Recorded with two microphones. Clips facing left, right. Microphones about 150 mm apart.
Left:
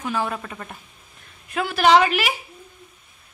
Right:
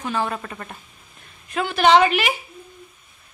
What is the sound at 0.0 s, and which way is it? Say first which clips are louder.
A woman's voice: right 1 dB; 5° left (ahead or behind).